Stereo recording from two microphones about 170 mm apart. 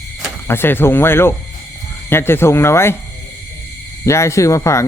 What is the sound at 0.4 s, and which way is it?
Speech, 15° left (ahead or behind).